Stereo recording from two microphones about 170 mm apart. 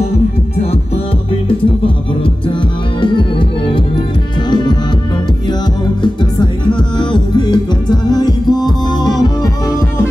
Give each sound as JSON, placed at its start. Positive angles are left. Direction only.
{"t": 3.0, "sound": "music", "side_deg": 30}
{"t": 6.4, "sound": "music", "side_deg": 30}